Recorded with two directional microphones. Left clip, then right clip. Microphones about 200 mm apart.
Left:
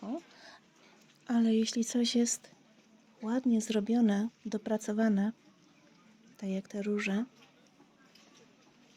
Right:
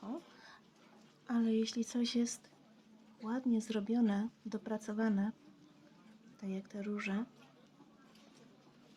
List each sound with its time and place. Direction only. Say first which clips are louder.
0.0 s a sound: left 5 dB; 40° left (ahead or behind)
1.3 s speech: left 5 dB; 40° left (ahead or behind)
6.4 s speech: left 7 dB; 40° left (ahead or behind)